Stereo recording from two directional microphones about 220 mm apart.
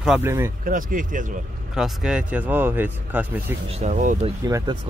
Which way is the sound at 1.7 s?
5° right (ahead or behind).